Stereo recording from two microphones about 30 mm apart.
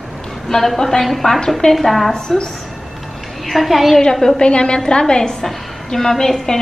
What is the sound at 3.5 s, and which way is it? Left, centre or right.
Speech, centre.